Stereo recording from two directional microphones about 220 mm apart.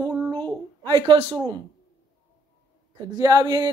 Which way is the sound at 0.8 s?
20° right (ahead or behind).